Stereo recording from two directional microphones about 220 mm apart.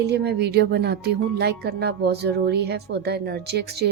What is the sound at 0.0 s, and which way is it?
Speech, 50° right (ahead or behind).